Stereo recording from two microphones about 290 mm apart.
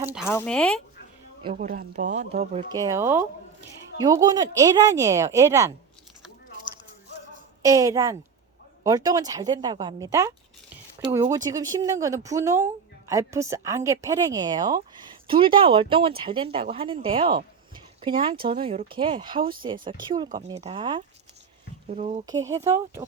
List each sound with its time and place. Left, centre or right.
0.0 s a sound: centre
0.3 s speech: centre
1.4 s speech: centre
1.6 s speech: right; by 5.7 s centre
7.6 s speech: centre
22.3 s speech: centre